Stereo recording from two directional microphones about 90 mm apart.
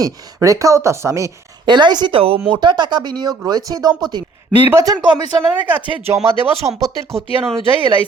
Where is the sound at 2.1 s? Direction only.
90° right.